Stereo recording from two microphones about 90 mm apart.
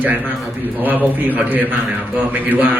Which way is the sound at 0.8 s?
20° right (ahead or behind).